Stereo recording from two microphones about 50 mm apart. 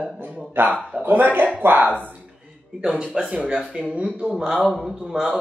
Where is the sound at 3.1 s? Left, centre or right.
Centre.